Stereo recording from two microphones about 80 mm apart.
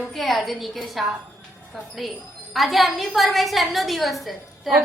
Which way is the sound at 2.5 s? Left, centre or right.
Centre.